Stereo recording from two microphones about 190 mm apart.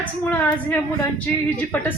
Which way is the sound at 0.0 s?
10° left (ahead or behind).